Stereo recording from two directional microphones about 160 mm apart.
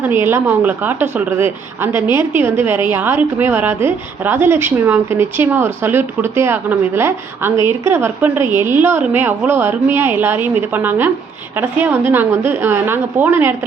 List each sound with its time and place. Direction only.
0.0 s a woman's voice: 15° right (ahead or behind)